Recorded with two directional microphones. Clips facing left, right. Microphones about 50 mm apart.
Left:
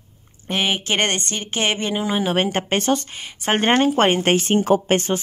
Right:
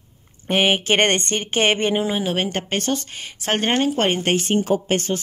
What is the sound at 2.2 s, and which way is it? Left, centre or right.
Speech, centre.